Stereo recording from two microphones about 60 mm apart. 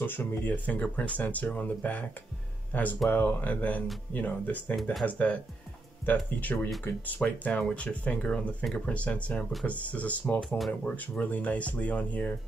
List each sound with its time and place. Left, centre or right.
0.0 s speech: left